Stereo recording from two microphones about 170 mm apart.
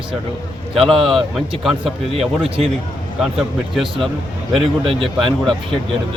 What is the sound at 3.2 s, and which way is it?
Speech, centre (ahead or behind).